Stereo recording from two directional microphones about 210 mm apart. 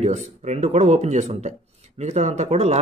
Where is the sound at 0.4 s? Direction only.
30° right (ahead or behind).